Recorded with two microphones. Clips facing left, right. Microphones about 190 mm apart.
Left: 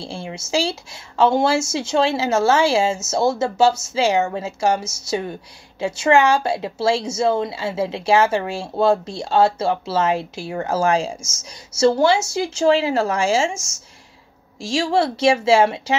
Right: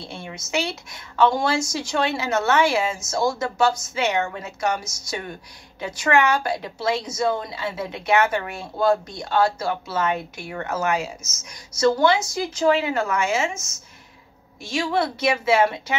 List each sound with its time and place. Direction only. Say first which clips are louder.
0.0 s a woman's voice: left 5 dB; 30° left (ahead or behind)
14.7 s a woman's voice: left 4 dB; 30° left (ahead or behind)